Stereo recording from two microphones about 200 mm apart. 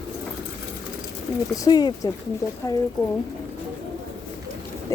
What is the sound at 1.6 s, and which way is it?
Speech, 20° left (ahead or behind).